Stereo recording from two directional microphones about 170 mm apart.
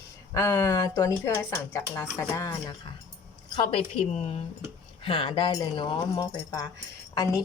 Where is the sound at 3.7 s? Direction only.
35° left (ahead or behind).